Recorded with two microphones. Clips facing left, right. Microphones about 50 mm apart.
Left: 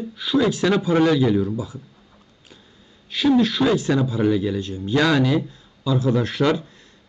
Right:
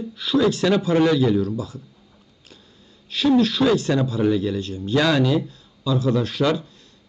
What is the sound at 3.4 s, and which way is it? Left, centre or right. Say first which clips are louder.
Speech: even; left.